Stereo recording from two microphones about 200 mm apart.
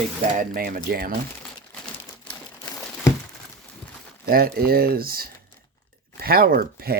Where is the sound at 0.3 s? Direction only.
45° right (ahead or behind).